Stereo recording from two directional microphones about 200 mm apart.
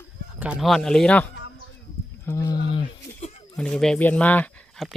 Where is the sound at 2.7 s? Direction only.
25° left (ahead or behind).